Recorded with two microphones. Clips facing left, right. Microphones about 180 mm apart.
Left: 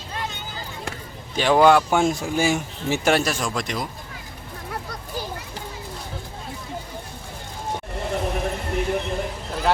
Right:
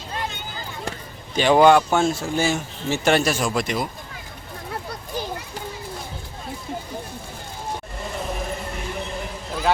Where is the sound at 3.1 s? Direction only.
Centre (ahead or behind).